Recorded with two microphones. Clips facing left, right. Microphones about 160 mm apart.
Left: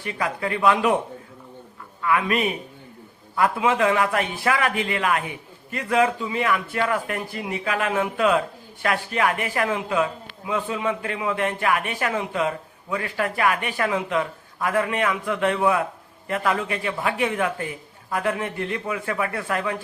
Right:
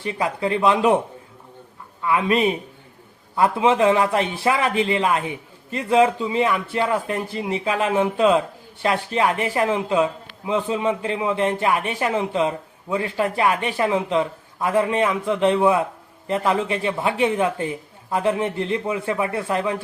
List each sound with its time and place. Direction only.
0.0 s a man's voice: 25° right (ahead or behind)
2.0 s a man's voice: 25° right (ahead or behind)